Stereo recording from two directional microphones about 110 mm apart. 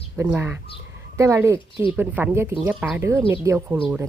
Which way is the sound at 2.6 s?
10° right (ahead or behind).